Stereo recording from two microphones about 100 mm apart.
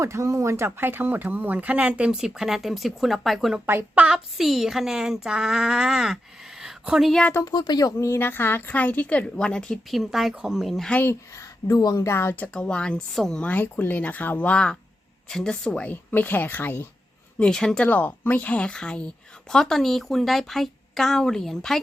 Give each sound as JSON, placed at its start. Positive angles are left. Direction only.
{"t": 0.0, "sound": "speech", "side_deg": -30}
{"t": 3.7, "sound": "a woman's voice", "side_deg": -25}
{"t": 4.0, "sound": "a woman's voice", "side_deg": -5}
{"t": 6.6, "sound": "a sound", "side_deg": -5}
{"t": 7.1, "sound": "a woman's voice", "side_deg": 10}
{"t": 7.4, "sound": "a woman's voice", "side_deg": 45}
{"t": 10.9, "sound": "a woman's voice", "side_deg": 25}
{"t": 12.5, "sound": "a woman's voice", "side_deg": 10}
{"t": 17.4, "sound": "a woman's voice", "side_deg": 5}
{"t": 17.8, "sound": "a woman's voice", "side_deg": 15}